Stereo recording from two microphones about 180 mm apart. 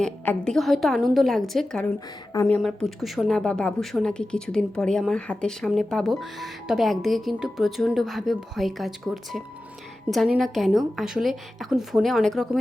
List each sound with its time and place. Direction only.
0.0 s speech: 5° left (ahead or behind)
2.3 s speech: 15° left (ahead or behind)
2.6 s speech: centre (ahead or behind)